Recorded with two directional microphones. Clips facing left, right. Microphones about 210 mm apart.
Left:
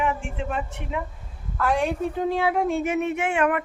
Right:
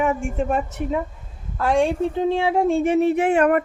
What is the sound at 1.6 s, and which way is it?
Speech, 25° right (ahead or behind).